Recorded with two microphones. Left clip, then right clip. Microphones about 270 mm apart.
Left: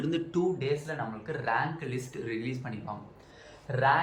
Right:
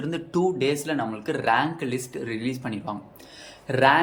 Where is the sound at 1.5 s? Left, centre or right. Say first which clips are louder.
Right 6 dB; right.